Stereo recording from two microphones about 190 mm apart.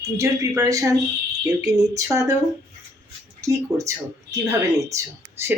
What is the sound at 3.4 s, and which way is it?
Speech, 15° right (ahead or behind).